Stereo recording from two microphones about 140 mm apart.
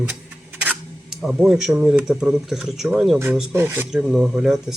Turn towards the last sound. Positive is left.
turn(degrees=-5)  # may be behind; listen again after turning